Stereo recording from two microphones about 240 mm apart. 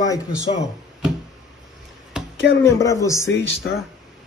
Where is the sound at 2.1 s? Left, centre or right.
Centre.